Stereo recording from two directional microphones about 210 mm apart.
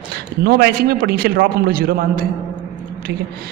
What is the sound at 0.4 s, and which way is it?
A man's voice, 50° right (ahead or behind).